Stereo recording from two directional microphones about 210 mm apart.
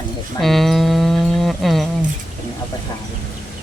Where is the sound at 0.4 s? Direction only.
Centre (ahead or behind).